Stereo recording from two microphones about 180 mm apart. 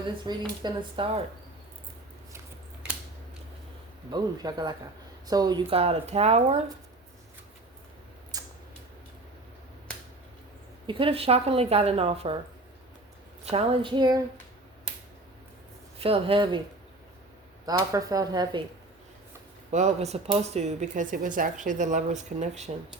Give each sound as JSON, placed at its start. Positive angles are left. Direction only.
{"t": 0.3, "sound": "speech", "side_deg": -25}
{"t": 4.1, "sound": "speech", "side_deg": -20}
{"t": 8.3, "sound": "a sound", "side_deg": -20}
{"t": 10.8, "sound": "speech", "side_deg": -30}
{"t": 13.4, "sound": "speech", "side_deg": -35}
{"t": 16.0, "sound": "speech", "side_deg": -30}
{"t": 17.7, "sound": "speech", "side_deg": -20}
{"t": 19.7, "sound": "speech", "side_deg": -40}